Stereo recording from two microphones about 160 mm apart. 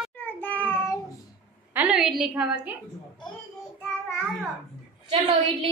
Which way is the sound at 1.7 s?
5° right (ahead or behind).